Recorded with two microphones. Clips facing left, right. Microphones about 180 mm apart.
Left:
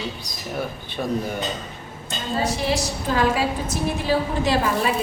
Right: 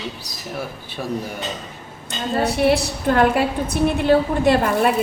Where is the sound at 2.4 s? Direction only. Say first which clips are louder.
Right 6 dB; 65° right (ahead or behind).